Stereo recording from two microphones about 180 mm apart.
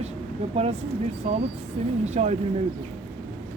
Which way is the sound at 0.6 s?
35° right (ahead or behind).